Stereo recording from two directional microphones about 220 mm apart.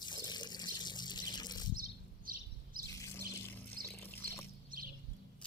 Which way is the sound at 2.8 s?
15° left (ahead or behind).